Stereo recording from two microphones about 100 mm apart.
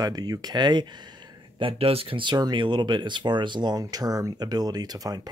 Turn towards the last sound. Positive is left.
turn(degrees=-40)  # may be behind; listen again after turning